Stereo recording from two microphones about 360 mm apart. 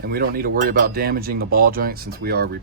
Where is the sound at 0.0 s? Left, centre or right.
Right.